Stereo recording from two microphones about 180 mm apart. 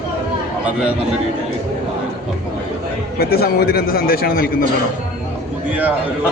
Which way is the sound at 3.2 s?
60° left (ahead or behind).